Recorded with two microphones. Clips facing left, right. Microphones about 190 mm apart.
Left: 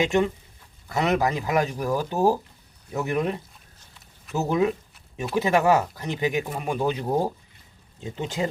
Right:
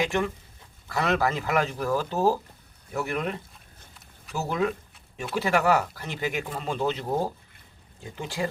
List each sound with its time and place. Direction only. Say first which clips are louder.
0.0 s speech: left 4 dB; 20° left (ahead or behind)